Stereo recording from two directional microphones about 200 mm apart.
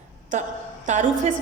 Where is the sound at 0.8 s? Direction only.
40° right (ahead or behind).